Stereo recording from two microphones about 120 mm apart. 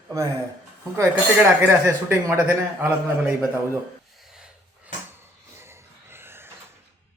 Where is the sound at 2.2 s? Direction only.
20° right (ahead or behind).